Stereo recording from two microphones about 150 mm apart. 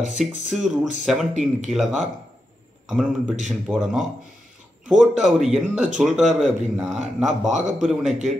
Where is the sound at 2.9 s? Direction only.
5° right (ahead or behind).